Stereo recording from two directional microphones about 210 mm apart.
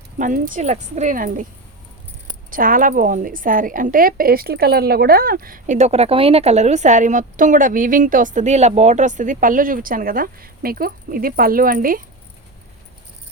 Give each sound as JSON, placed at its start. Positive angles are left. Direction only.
{"t": 0.2, "sound": "a woman's voice", "side_deg": -40}
{"t": 2.5, "sound": "a woman's voice", "side_deg": -40}